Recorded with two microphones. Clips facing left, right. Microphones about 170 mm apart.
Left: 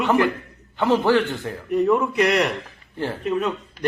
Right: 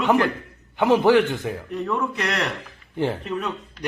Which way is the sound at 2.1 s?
10° left (ahead or behind).